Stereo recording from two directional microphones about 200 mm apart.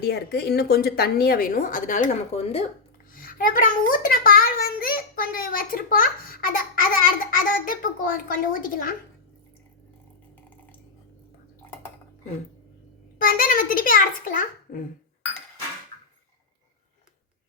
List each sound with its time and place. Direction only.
0.0 s a child's voice: 55° left (ahead or behind); by 2.6 s 30° left (ahead or behind)
3.1 s a child's voice: 45° left (ahead or behind)
13.1 s a child's voice: 45° left (ahead or behind)